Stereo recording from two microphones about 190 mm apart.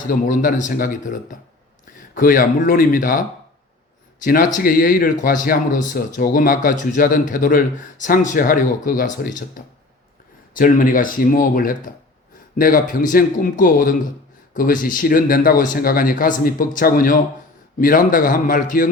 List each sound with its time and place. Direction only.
0.1 s speech: 45° left (ahead or behind)
4.2 s speech: 45° left (ahead or behind)